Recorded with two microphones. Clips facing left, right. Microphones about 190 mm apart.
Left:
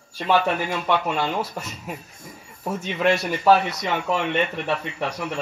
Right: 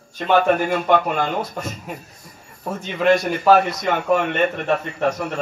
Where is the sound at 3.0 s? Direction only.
55° right (ahead or behind).